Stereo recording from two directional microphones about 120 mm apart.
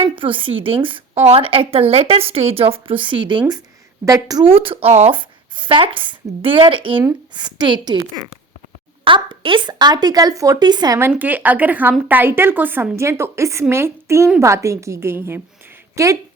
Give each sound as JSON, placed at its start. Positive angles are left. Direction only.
{"t": 0.0, "sound": "a woman's voice", "side_deg": -45}
{"t": 4.0, "sound": "speech", "side_deg": -30}
{"t": 4.4, "sound": "a woman's voice", "side_deg": -50}
{"t": 5.5, "sound": "a woman's voice", "side_deg": -45}
{"t": 11.1, "sound": "a woman's voice", "side_deg": -15}